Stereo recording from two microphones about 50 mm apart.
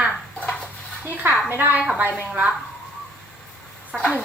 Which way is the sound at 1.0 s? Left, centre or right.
Right.